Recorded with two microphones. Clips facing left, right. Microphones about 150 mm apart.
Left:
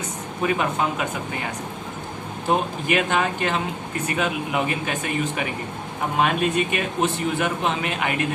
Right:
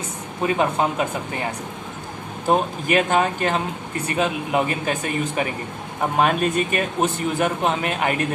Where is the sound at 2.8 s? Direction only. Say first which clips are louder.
Right 3 dB; 40° right (ahead or behind).